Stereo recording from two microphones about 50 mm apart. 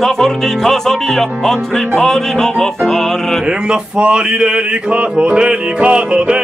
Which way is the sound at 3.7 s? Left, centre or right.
Centre.